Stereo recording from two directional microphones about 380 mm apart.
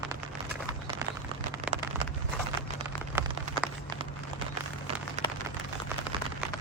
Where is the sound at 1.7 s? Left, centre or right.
Centre.